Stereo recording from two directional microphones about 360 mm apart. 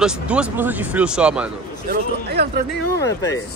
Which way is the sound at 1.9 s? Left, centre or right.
Right.